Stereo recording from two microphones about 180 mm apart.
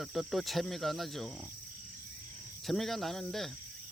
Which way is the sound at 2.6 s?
Centre (ahead or behind).